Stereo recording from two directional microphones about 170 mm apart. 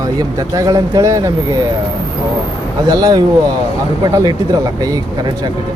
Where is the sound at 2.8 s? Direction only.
20° right (ahead or behind).